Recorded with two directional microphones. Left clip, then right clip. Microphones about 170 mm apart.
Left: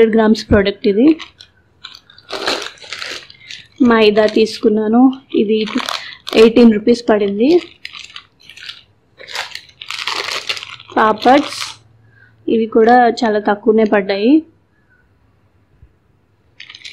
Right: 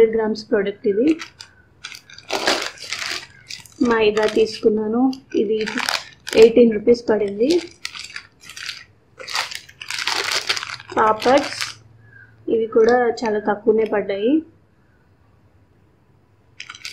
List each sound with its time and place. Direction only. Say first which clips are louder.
0.0 s speech: left 5 dB; 55° left (ahead or behind)
1.8 s crunch: even; 35° right (ahead or behind)
3.8 s speech: left 6 dB; 55° left (ahead or behind)
5.7 s a sound: left 2 dB; 10° right (ahead or behind)
6.3 s speech: left 3 dB; 55° left (ahead or behind)
9.1 s crunch: even; 10° right (ahead or behind)
11.0 s speech: left 5 dB; 50° left (ahead or behind)
12.4 s speech: left 4 dB; 50° left (ahead or behind)